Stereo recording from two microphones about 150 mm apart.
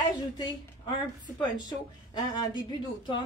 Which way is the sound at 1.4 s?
30° left (ahead or behind).